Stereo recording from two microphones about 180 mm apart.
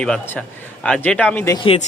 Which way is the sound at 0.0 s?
5° left (ahead or behind).